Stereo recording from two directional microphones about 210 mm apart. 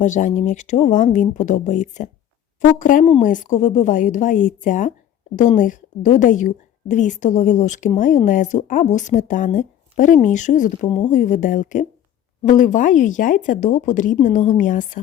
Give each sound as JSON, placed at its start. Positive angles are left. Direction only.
{"t": 0.0, "sound": "a woman's voice", "side_deg": 35}
{"t": 10.8, "sound": "speech", "side_deg": 25}
{"t": 11.1, "sound": "a woman's voice", "side_deg": 35}